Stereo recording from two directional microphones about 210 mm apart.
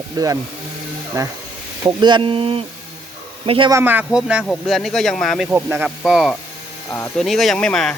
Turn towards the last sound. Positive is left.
turn(degrees=5)  # may be behind; listen again after turning